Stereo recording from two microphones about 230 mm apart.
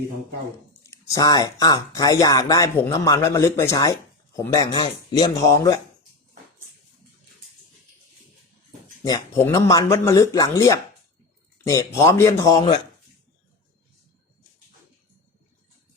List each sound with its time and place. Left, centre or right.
0.9 s speech: centre
9.0 s speech: centre